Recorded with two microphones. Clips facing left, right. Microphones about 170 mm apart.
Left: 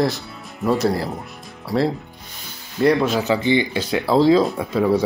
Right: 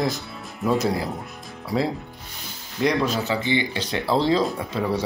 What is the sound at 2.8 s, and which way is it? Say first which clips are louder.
Speech: left 5 dB; 10° left (ahead or behind).